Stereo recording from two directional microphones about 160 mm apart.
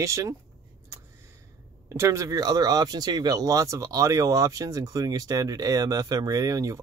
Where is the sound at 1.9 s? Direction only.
15° right (ahead or behind).